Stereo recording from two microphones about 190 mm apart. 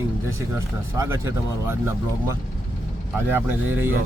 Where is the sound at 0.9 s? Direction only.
15° right (ahead or behind).